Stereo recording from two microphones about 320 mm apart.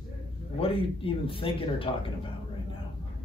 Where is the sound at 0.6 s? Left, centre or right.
Centre.